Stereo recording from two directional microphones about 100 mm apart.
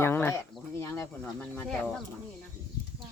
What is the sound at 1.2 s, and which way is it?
Speech, 15° left (ahead or behind).